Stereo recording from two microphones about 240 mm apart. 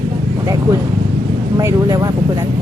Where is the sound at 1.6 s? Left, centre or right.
Centre.